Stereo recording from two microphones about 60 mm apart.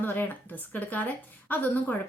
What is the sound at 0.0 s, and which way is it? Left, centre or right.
A woman's voice, left.